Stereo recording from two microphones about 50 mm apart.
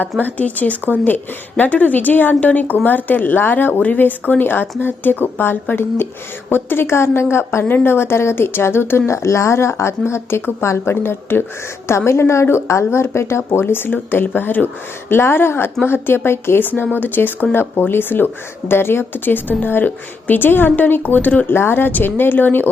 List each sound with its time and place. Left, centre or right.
0.2 s a woman's voice: left
7.6 s speech: left
9.0 s a woman's voice: left
21.5 s speech: left